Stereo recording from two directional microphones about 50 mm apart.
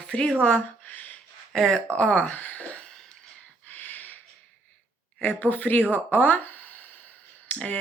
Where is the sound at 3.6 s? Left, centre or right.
Left.